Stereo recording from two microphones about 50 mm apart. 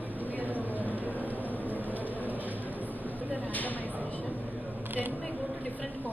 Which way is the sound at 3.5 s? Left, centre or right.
Left.